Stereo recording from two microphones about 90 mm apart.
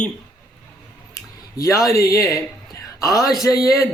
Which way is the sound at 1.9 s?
40° left (ahead or behind).